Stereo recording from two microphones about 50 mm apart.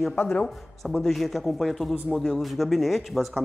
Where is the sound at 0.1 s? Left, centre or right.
Left.